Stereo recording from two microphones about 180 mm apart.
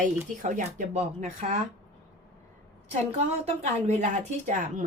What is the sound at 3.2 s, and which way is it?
Speech, 40° right (ahead or behind).